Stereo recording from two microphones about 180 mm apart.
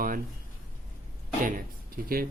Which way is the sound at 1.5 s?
50° right (ahead or behind).